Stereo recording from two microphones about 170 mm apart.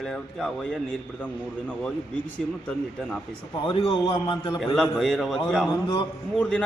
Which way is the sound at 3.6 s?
30° left (ahead or behind).